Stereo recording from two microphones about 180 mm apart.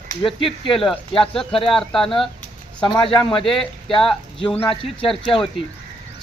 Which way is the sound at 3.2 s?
25° left (ahead or behind).